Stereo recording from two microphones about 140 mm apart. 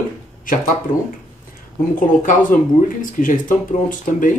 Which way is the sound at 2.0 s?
70° left (ahead or behind).